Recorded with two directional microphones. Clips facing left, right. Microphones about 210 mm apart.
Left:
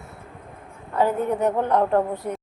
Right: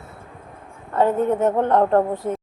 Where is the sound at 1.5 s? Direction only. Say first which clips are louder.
Right 3 dB; 25° right (ahead or behind).